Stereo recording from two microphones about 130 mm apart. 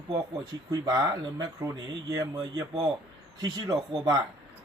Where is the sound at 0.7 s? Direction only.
30° right (ahead or behind).